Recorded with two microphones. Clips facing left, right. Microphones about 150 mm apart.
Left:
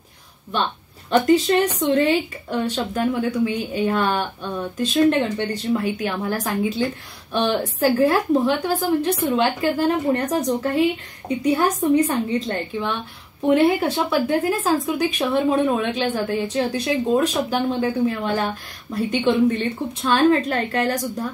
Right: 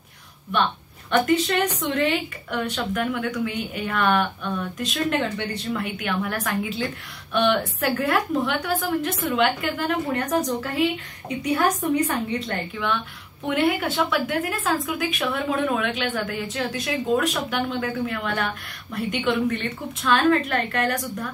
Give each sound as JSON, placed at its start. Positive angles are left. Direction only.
{"t": 1.1, "sound": "speech", "side_deg": 30}